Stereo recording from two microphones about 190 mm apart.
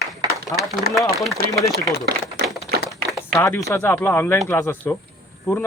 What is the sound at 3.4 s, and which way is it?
Speech, 15° left (ahead or behind).